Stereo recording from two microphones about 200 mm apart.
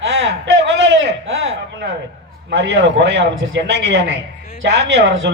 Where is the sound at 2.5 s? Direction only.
60° right (ahead or behind).